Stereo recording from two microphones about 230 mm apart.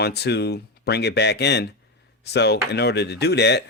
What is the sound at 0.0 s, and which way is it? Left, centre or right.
Speech, left.